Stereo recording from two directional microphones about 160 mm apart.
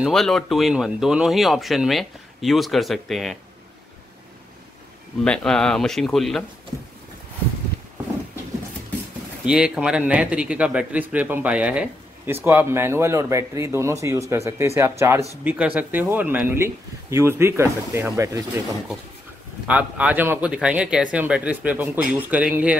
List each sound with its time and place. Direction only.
0.0 s speech: centre (ahead or behind)
5.2 s speech: 5° left (ahead or behind)
9.4 s speech: 5° right (ahead or behind)
19.7 s speech: 10° right (ahead or behind)